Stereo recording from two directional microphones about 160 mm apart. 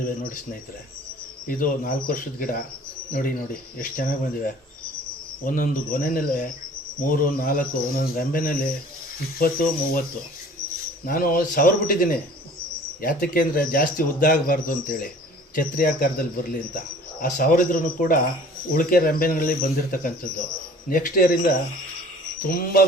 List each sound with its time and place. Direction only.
0.0 s speech: 60° left (ahead or behind)
1.5 s speech: 55° left (ahead or behind)
11.0 s speech: 60° left (ahead or behind)